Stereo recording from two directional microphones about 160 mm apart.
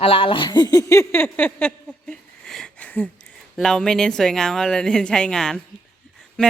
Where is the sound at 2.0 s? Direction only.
5° left (ahead or behind).